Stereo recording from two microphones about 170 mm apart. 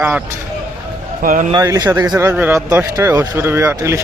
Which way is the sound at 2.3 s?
10° right (ahead or behind).